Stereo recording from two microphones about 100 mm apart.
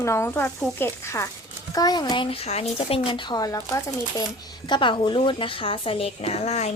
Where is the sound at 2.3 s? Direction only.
85° left; by 3.4 s 55° left (ahead or behind).